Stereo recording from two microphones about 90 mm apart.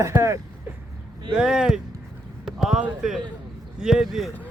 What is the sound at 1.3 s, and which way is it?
Speech, 10° right (ahead or behind).